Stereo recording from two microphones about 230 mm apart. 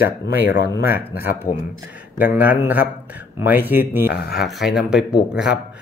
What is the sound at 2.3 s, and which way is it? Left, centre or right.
A man's voice, centre.